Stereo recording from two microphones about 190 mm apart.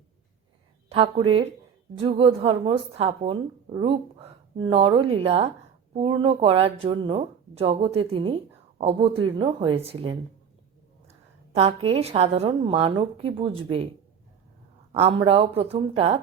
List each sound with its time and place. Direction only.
0.9 s a woman's voice: 30° right (ahead or behind)
14.9 s a woman's voice: 30° right (ahead or behind)